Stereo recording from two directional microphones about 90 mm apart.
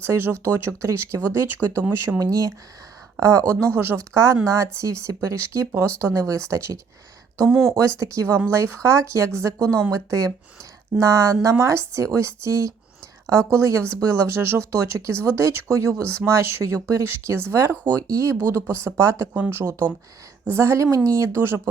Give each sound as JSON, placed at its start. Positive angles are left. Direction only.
{"t": 0.0, "sound": "speech", "side_deg": -25}
{"t": 2.1, "sound": "speech", "side_deg": -35}
{"t": 7.3, "sound": "speech", "side_deg": -25}
{"t": 7.8, "sound": "speech", "side_deg": -35}
{"t": 19.3, "sound": "speech", "side_deg": -20}